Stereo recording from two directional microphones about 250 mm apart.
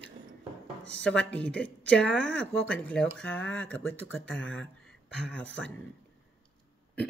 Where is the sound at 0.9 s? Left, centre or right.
Centre.